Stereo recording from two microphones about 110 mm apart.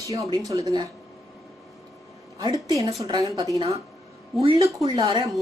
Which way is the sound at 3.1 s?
50° right (ahead or behind).